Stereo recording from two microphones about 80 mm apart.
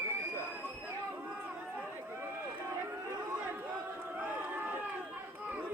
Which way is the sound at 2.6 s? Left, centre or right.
Right.